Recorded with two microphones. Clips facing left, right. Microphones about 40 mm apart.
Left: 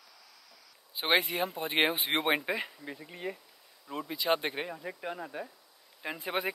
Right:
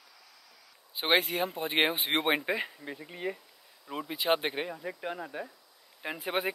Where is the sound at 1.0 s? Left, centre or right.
Centre.